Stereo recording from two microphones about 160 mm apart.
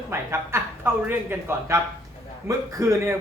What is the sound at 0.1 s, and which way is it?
Speech, 15° right (ahead or behind).